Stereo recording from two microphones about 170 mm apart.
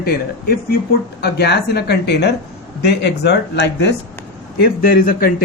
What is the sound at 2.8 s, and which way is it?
Speech, 85° left.